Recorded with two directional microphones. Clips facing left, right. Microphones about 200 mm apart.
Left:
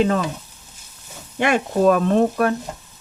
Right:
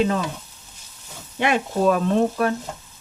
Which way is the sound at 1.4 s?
50° left (ahead or behind).